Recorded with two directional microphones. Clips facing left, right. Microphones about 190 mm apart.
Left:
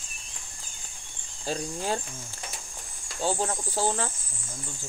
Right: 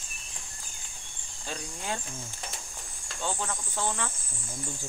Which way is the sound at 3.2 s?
35° left (ahead or behind).